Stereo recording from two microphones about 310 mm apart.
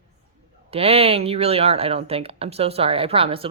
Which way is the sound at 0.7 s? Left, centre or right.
Centre.